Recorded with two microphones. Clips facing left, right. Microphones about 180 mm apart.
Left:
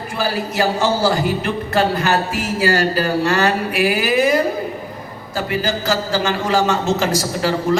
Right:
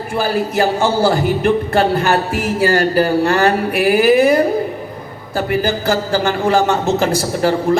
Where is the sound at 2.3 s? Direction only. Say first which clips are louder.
Right 3 dB; 55° right (ahead or behind).